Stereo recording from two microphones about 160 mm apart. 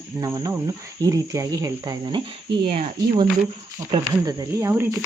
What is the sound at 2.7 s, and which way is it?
Speech, 35° right (ahead or behind).